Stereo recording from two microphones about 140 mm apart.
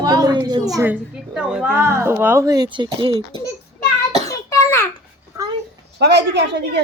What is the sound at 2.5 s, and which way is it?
Speech, 30° right (ahead or behind).